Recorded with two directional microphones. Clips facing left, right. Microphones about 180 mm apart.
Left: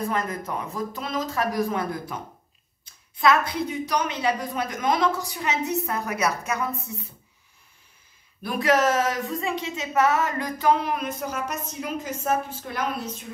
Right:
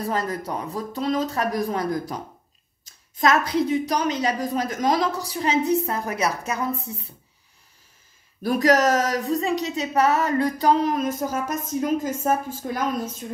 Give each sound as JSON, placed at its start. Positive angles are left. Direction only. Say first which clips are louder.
{"t": 0.0, "sound": "a woman's voice", "louder": "right 1 dB", "side_deg": -35}
{"t": 3.2, "sound": "a woman's voice", "louder": "right 2 dB", "side_deg": -40}
{"t": 8.4, "sound": "a woman's voice", "louder": "right 3 dB", "side_deg": -40}
{"t": 12.7, "sound": "a sound", "louder": "right 2 dB", "side_deg": -45}